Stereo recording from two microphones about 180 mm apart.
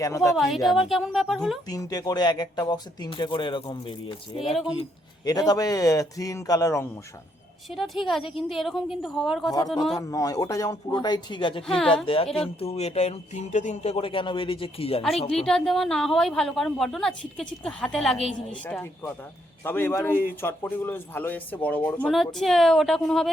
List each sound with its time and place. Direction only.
0.0 s speech: 15° left (ahead or behind)
0.3 s a woman's voice: centre (ahead or behind)
1.6 s speech: 20° left (ahead or behind)
7.7 s a woman's voice: centre (ahead or behind)
10.0 s speech: 20° left (ahead or behind)
15.4 s a woman's voice: 5° left (ahead or behind)